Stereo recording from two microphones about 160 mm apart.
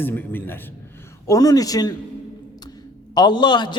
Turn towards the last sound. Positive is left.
turn(degrees=30)  # may be behind; listen again after turning